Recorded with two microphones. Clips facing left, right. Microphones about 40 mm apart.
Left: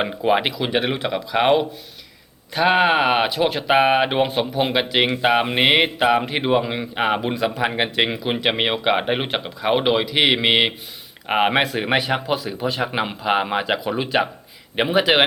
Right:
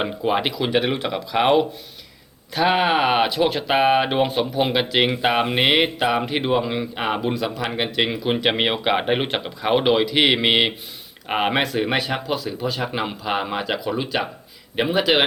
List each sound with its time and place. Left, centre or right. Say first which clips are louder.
0.0 s speech: left 2 dB; centre